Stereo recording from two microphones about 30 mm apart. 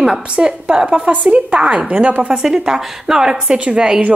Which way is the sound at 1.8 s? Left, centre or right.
Right.